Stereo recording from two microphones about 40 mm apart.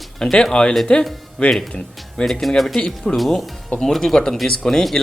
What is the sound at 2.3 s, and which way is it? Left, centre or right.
Speech, centre.